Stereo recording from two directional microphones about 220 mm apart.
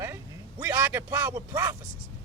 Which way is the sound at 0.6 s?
10° right (ahead or behind).